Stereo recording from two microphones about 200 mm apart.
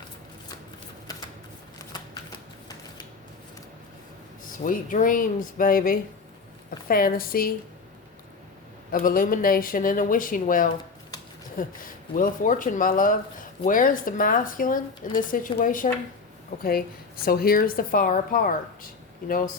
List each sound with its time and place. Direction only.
4.5 s speech: 40° left (ahead or behind)
8.9 s speech: 45° left (ahead or behind)